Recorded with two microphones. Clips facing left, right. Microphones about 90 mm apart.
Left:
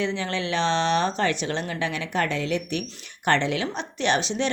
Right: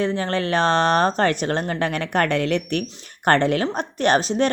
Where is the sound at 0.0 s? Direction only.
45° right (ahead or behind); by 2.8 s 60° right (ahead or behind).